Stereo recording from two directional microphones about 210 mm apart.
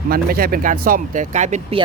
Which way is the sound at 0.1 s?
45° right (ahead or behind).